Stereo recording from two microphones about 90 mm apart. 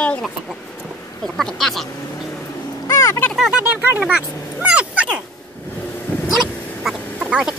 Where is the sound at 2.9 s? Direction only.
30° left (ahead or behind).